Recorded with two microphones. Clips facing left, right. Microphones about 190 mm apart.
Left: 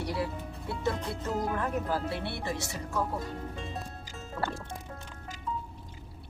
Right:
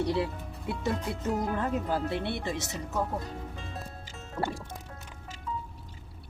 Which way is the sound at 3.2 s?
Centre (ahead or behind).